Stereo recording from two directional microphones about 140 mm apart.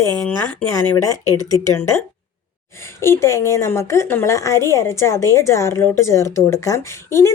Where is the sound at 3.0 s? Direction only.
20° left (ahead or behind).